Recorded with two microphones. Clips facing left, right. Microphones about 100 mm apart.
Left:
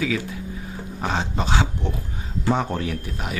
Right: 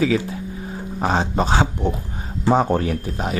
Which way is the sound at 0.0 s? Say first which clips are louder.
Right 6 dB; 35° right (ahead or behind).